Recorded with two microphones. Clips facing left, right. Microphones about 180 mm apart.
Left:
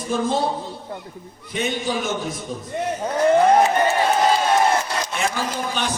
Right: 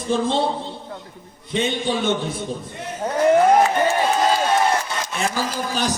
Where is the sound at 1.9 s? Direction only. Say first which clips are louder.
Right 3 dB; 30° right (ahead or behind).